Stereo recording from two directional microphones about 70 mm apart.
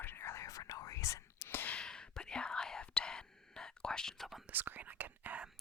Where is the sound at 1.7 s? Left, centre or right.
Centre.